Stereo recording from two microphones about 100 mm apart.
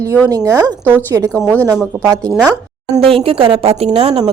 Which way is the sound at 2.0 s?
30° right (ahead or behind).